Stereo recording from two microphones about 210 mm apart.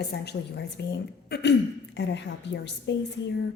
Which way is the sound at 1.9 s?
55° left (ahead or behind).